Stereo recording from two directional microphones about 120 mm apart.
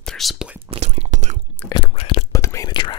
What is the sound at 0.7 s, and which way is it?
Whispering, 60° right (ahead or behind).